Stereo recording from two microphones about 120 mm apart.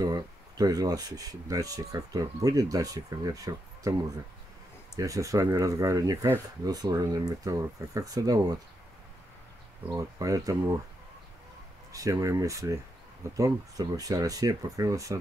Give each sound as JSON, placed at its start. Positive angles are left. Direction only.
{"t": 0.0, "sound": "speech", "side_deg": -30}
{"t": 4.9, "sound": "speech", "side_deg": -30}
{"t": 9.9, "sound": "speech", "side_deg": -30}
{"t": 11.9, "sound": "speech", "side_deg": -30}